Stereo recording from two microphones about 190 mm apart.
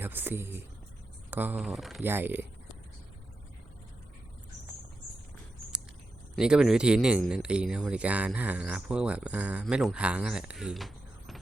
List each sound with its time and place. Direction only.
0.0 s speech: 10° right (ahead or behind)
2.0 s speech: 10° right (ahead or behind)
6.3 s speech: 5° right (ahead or behind)